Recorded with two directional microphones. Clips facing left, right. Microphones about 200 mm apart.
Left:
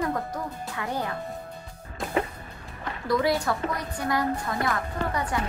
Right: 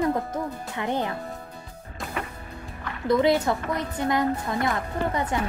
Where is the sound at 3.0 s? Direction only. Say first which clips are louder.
Right 4 dB; 20° right (ahead or behind).